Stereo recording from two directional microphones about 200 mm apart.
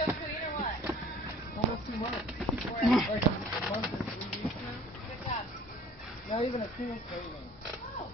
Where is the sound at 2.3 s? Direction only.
Centre (ahead or behind).